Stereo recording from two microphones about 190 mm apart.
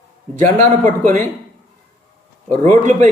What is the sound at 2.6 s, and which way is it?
Speech, 40° right (ahead or behind).